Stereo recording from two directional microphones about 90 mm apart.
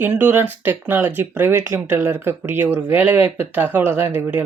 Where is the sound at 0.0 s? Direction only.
20° right (ahead or behind).